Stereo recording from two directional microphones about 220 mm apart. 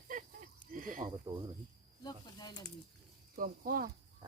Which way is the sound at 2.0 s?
20° left (ahead or behind).